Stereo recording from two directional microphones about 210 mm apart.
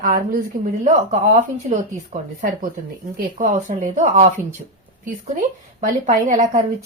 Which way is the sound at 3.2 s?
40° right (ahead or behind).